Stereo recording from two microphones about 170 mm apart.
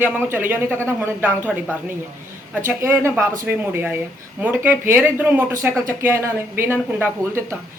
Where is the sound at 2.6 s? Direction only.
15° right (ahead or behind).